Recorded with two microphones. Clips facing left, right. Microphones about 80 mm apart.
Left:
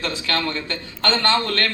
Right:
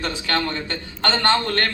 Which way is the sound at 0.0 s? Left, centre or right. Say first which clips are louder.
Right 1 dB; right.